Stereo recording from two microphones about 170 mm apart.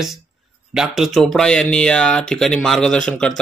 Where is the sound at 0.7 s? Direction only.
Centre (ahead or behind).